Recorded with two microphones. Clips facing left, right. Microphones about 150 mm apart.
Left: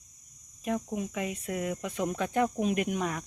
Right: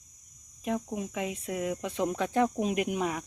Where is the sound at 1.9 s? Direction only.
25° right (ahead or behind).